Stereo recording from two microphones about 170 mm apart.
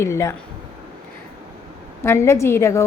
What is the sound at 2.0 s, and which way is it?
Speech, 15° left (ahead or behind).